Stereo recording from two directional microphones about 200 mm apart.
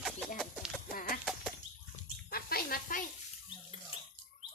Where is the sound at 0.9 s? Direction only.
45° left (ahead or behind).